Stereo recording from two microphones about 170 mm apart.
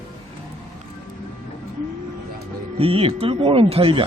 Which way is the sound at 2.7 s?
35° right (ahead or behind).